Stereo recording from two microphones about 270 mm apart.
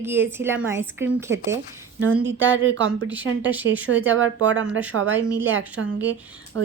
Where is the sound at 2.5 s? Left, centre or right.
Right.